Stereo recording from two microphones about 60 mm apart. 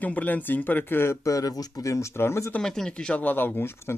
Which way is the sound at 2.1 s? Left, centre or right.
Left.